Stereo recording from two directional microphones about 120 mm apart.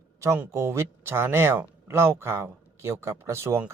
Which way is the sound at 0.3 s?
20° right (ahead or behind).